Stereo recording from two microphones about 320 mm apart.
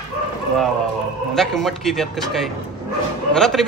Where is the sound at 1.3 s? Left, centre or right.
Centre.